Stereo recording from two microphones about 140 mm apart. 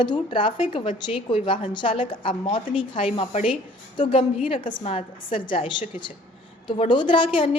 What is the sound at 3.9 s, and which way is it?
A woman's voice, 40° left (ahead or behind).